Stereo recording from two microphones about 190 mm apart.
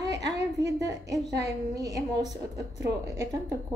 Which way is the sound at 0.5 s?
15° right (ahead or behind).